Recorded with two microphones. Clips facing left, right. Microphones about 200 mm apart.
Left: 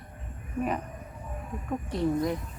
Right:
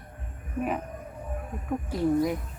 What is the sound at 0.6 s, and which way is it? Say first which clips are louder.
Speech: right 1 dB; 5° right (ahead or behind).